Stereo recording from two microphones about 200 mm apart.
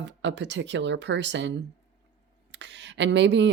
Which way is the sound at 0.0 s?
65° right (ahead or behind).